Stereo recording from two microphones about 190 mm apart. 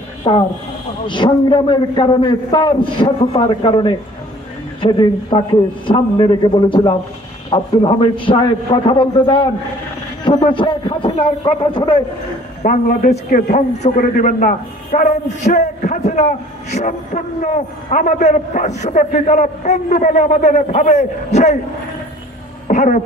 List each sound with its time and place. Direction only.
0.3 s a man's voice: 25° left (ahead or behind)
10.5 s a man's voice: 25° left (ahead or behind)
12.6 s a man's voice: 45° left (ahead or behind)
22.7 s speech: 40° left (ahead or behind)